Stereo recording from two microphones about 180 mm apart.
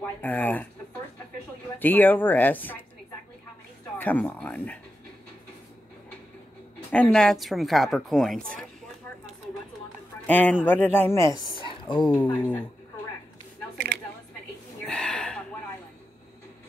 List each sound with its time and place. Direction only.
0.2 s speech: 10° left (ahead or behind)
1.8 s speech: 10° left (ahead or behind)
4.0 s speech: 10° left (ahead or behind)
6.9 s a woman's voice: 5° left (ahead or behind)
10.2 s speech: 10° left (ahead or behind)
11.5 s a sound: 30° left (ahead or behind)
12.1 s speech: 10° left (ahead or behind)
14.9 s a sound: 5° left (ahead or behind)